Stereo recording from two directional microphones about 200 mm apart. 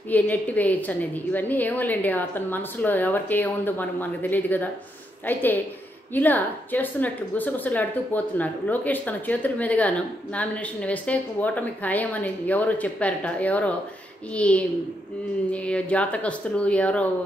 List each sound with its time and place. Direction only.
0.1 s a woman's voice: 10° left (ahead or behind)